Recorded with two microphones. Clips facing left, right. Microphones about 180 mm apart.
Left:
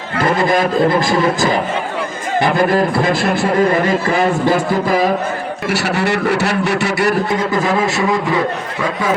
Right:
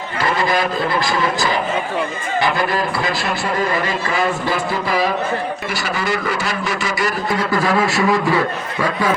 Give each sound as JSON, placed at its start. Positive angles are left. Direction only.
{"t": 0.2, "sound": "speech", "side_deg": 50}
{"t": 5.7, "sound": "a man's voice", "side_deg": 70}
{"t": 7.3, "sound": "a man's voice", "side_deg": 20}